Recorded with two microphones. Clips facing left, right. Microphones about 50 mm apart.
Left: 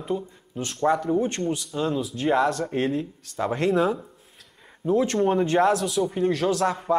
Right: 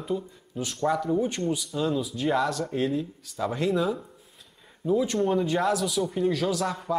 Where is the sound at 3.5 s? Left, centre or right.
Left.